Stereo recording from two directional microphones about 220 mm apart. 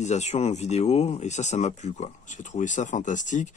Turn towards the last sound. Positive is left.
turn(degrees=35)  # may be behind; listen again after turning